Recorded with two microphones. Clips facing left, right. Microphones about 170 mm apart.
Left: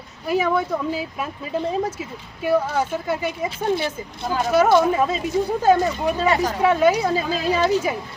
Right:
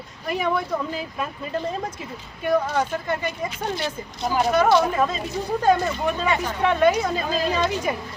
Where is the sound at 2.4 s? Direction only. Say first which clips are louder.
Left 1 dB; 5° left (ahead or behind).